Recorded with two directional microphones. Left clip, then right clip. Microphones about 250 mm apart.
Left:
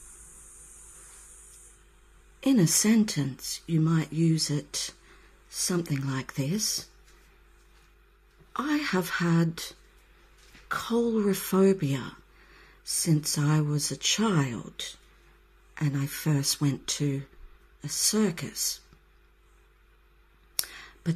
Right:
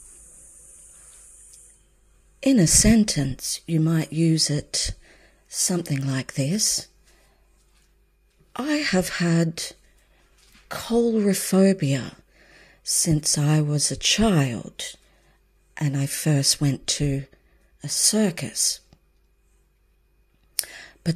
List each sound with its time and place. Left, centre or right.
2.4 s speech: right
8.5 s speech: right
10.7 s speech: right
20.6 s a sound: right